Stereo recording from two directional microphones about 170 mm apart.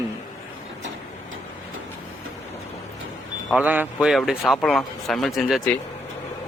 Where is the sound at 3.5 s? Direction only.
5° right (ahead or behind).